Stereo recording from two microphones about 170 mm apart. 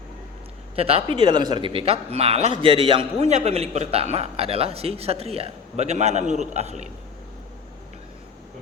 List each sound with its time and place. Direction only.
0.8 s a man's voice: 35° right (ahead or behind)